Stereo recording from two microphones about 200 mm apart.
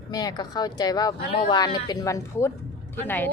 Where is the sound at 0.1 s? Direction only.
20° left (ahead or behind).